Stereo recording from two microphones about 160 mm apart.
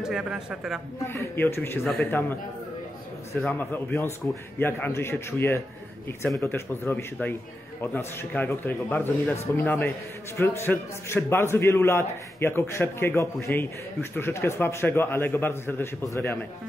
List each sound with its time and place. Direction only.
0.0 s a man's voice: 5° right (ahead or behind)
1.0 s a man's voice: 15° left (ahead or behind)
3.3 s a man's voice: 10° left (ahead or behind)